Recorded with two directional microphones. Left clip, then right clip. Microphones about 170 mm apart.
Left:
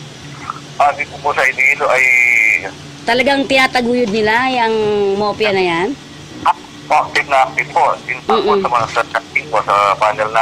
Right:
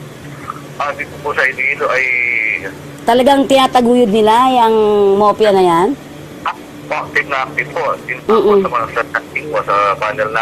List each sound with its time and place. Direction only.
0.7 s speech: 25° left (ahead or behind)
3.1 s a woman's voice: 30° right (ahead or behind)
6.4 s speech: 25° left (ahead or behind)
8.3 s speech: 10° left (ahead or behind)
8.6 s a man's voice: 25° left (ahead or behind)